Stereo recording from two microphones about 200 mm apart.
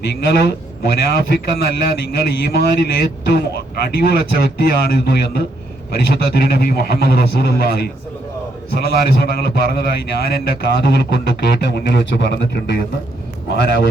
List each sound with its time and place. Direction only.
0.0 s a man's voice: 55° left (ahead or behind)